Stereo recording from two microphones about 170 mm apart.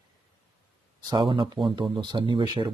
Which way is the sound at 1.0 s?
30° right (ahead or behind).